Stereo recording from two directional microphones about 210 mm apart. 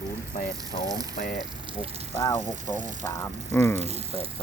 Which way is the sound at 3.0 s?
10° left (ahead or behind).